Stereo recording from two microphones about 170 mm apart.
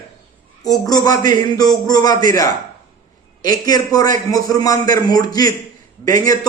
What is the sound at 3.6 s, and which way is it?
A man's voice, 20° left (ahead or behind).